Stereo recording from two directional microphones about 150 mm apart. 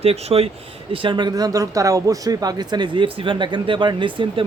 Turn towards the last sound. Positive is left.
turn(degrees=-35)  # may be behind; listen again after turning